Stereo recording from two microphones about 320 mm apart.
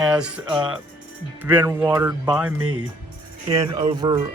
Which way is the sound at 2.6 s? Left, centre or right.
Right.